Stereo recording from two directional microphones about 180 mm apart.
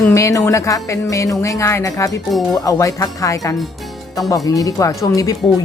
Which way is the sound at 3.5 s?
Centre (ahead or behind).